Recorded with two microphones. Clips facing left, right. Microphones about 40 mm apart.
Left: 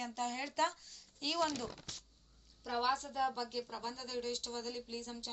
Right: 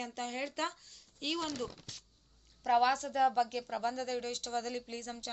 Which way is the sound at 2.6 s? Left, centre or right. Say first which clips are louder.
Right 7 dB; right.